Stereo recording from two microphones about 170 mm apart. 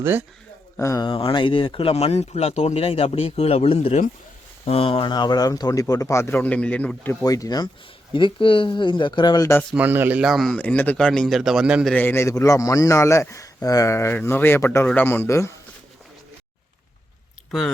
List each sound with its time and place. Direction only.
0.0 s speech: 10° right (ahead or behind)
0.8 s a man's voice: 15° left (ahead or behind)
1.0 s speech: 30° left (ahead or behind)
9.7 s speech: 10° right (ahead or behind)
11.9 s a man's voice: 10° left (ahead or behind)